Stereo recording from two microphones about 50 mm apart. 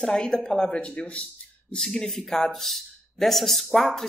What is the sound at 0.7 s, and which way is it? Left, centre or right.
Speech, left.